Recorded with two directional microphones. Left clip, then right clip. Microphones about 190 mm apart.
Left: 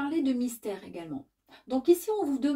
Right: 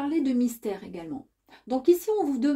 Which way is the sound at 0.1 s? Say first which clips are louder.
Right 3 dB; 45° right (ahead or behind).